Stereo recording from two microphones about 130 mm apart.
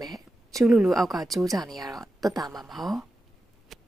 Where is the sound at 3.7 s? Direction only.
Centre (ahead or behind).